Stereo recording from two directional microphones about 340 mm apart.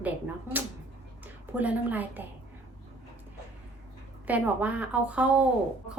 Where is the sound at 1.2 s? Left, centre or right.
Centre.